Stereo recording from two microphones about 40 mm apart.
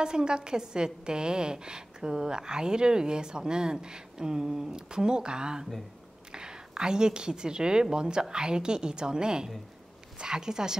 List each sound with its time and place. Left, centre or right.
0.0 s a woman's voice: centre